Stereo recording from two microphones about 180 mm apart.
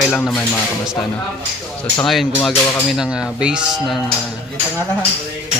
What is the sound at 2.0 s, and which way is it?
Music, centre (ahead or behind).